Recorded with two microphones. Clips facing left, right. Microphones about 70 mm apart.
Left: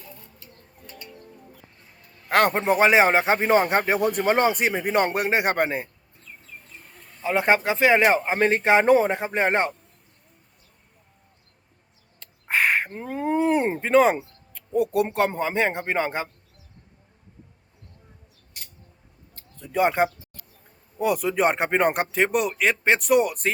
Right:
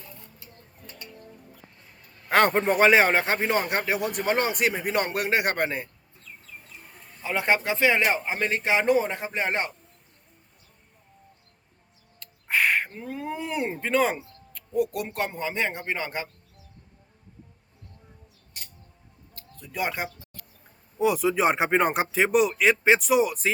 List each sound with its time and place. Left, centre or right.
2.3 s a man's voice: centre; by 5.9 s left
7.3 s a man's voice: left
12.5 s crow: left
12.9 s speech: left
13.7 s a man's voice: left
19.5 s speech: left
21.0 s speech: centre